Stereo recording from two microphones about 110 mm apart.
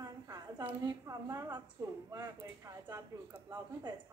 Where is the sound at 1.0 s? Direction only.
30° right (ahead or behind).